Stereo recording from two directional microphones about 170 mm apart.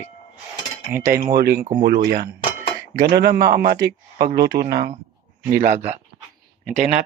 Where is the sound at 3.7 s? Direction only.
70° right (ahead or behind).